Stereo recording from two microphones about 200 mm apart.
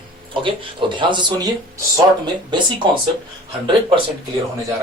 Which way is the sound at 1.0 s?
25° right (ahead or behind).